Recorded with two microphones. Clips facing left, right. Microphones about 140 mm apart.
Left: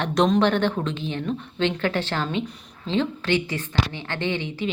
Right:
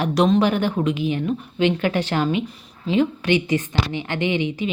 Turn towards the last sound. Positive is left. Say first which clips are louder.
# right 4 dB
turn(degrees=-15)  # may be behind; listen again after turning